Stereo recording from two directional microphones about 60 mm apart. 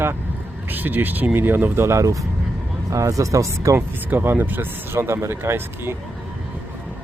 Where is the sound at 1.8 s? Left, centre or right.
Right.